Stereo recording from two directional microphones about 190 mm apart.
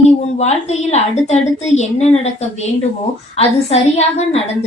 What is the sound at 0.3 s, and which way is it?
A woman's voice, 35° left (ahead or behind).